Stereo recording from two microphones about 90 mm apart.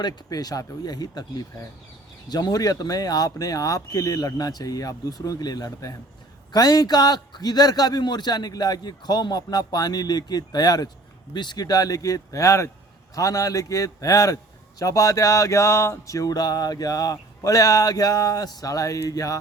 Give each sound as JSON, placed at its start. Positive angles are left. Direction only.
{"t": 0.0, "sound": "a man's voice", "side_deg": 45}
{"t": 11.3, "sound": "music", "side_deg": 50}